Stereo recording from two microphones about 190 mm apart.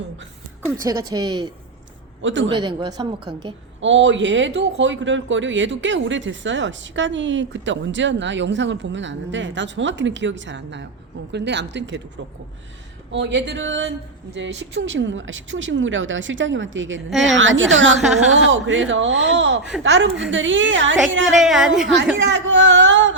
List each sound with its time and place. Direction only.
0.9 s a woman's voice: 20° right (ahead or behind)
2.2 s speech: 75° right (ahead or behind)
2.5 s a woman's voice: 25° right (ahead or behind)
3.8 s speech: 75° right (ahead or behind)
13.1 s speech: 70° right (ahead or behind)
18.0 s a woman's voice: centre (ahead or behind)
18.3 s speech: 75° right (ahead or behind)
21.3 s a woman's voice: centre (ahead or behind)
22.2 s speech: 70° right (ahead or behind)